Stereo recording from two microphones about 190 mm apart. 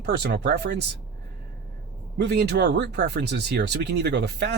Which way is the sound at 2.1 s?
60° right (ahead or behind).